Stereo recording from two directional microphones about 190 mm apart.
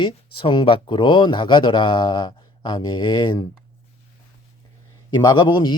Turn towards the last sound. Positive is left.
turn(degrees=25)  # may be behind; listen again after turning